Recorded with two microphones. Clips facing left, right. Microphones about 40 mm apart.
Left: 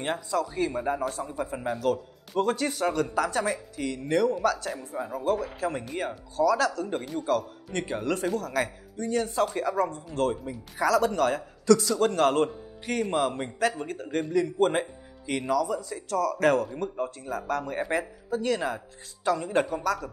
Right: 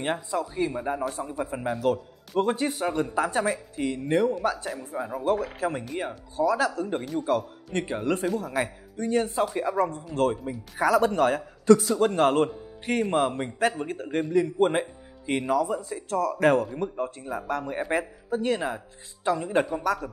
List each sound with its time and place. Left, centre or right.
0.0 s speech: centre
0.7 s a man's voice: centre
4.6 s a man's voice: centre
5.1 s speech: right
5.9 s speech: centre
6.3 s speech: right
8.9 s speech: right; by 17.9 s centre
17.9 s speech: right
19.8 s speech: right